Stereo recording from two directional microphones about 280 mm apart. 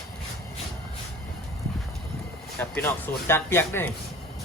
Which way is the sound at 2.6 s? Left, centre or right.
Centre.